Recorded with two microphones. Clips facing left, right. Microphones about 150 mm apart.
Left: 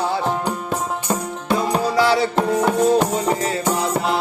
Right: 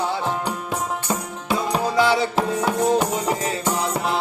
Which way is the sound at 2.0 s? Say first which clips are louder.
Left 1 dB; 20° right (ahead or behind).